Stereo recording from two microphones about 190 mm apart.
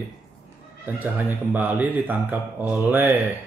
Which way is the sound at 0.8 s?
10° right (ahead or behind).